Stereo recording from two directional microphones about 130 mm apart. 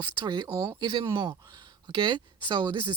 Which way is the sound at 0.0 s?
40° right (ahead or behind).